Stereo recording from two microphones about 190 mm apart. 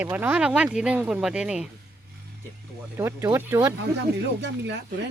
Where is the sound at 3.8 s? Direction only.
65° right (ahead or behind).